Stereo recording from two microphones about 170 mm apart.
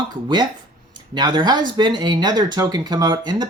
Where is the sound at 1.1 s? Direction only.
25° right (ahead or behind).